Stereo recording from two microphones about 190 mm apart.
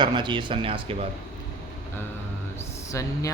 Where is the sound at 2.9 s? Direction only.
15° left (ahead or behind).